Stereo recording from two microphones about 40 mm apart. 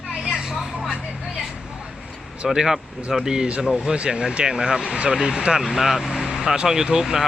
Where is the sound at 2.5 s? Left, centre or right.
Centre.